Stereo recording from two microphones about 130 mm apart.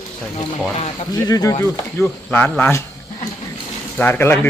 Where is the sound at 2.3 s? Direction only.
10° left (ahead or behind).